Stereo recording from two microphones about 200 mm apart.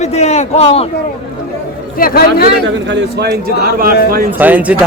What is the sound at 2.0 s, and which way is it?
Speech, 45° left (ahead or behind).